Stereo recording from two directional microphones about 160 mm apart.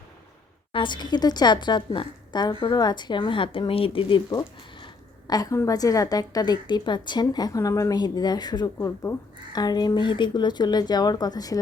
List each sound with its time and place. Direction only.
0.7 s a woman's voice: 30° left (ahead or behind)